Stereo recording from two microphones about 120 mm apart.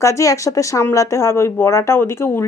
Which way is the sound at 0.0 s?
25° left (ahead or behind).